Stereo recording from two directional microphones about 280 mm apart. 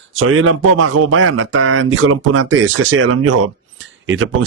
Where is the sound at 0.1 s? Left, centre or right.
Right.